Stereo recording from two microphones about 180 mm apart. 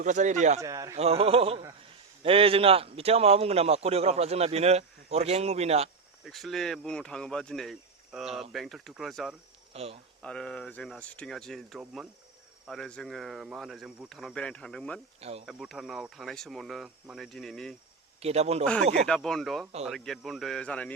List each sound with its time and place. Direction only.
0.0 s a man's voice: 45° right (ahead or behind)
0.6 s speech: 15° right (ahead or behind)
0.9 s a man's voice: 35° right (ahead or behind)
6.2 s speech: centre (ahead or behind)
9.7 s a man's voice: 35° right (ahead or behind)
10.2 s speech: 5° left (ahead or behind)
15.2 s a man's voice: 35° right (ahead or behind)
15.4 s speech: centre (ahead or behind)
18.2 s speech: 35° right (ahead or behind)
18.6 s speech: 5° left (ahead or behind)